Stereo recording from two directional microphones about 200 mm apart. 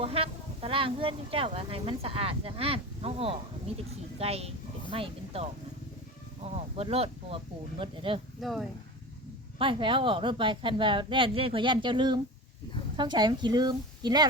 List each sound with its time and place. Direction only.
0.0 s a woman's voice: 30° right (ahead or behind)
8.4 s speech: centre (ahead or behind)
9.6 s a woman's voice: 25° right (ahead or behind)